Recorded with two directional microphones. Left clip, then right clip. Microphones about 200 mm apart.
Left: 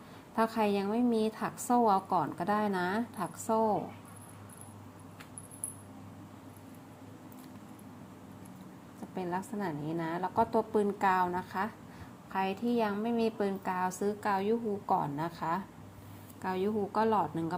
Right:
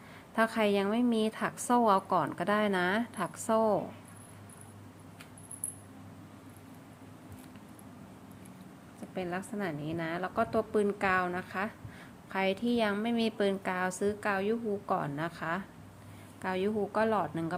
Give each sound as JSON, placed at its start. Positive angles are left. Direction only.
{"t": 0.3, "sound": "a woman's voice", "side_deg": -15}
{"t": 9.1, "sound": "a woman's voice", "side_deg": -10}
{"t": 12.3, "sound": "a woman's voice", "side_deg": -20}